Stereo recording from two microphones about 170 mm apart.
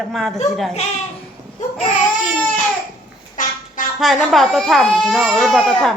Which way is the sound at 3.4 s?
50° left (ahead or behind).